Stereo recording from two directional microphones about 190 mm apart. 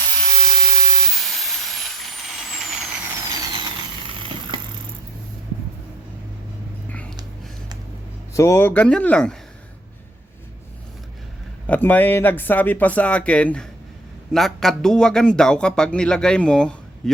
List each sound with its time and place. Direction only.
0.2 s steam: centre (ahead or behind)
3.3 s vehicle: 20° right (ahead or behind)
8.3 s speech: 15° left (ahead or behind)
11.6 s speech: 10° left (ahead or behind)